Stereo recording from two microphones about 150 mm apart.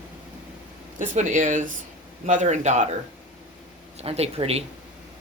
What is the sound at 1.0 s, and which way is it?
Speech, 55° right (ahead or behind).